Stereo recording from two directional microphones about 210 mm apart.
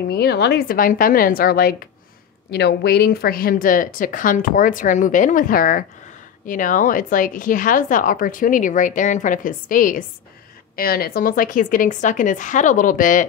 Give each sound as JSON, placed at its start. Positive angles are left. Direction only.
{"t": 0.1, "sound": "a woman's voice", "side_deg": 50}